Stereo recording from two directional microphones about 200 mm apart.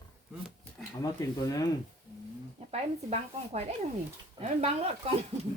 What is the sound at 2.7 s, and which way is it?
Speech, 30° right (ahead or behind).